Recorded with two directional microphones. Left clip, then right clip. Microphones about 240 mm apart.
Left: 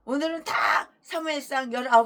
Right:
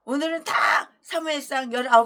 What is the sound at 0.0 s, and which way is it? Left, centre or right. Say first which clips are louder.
A woman's voice: right 2 dB; centre.